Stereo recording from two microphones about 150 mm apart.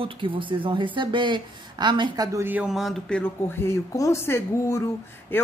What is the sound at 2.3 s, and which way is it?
Speech, 10° right (ahead or behind).